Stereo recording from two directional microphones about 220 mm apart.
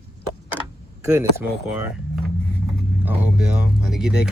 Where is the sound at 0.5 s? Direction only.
10° right (ahead or behind).